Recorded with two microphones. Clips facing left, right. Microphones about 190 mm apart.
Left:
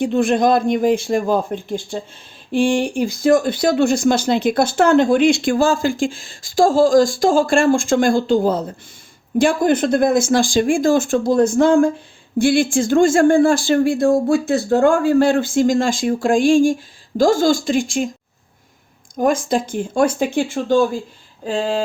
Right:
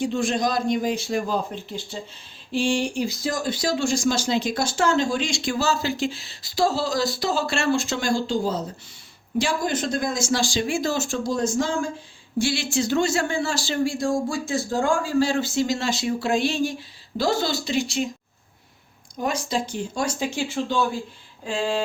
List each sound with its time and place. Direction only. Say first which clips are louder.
0.0 s speech: left 7 dB; 60° left (ahead or behind)
19.1 s speech: left 8 dB; 50° left (ahead or behind)
21.4 s a sound: left 5 dB; 40° left (ahead or behind)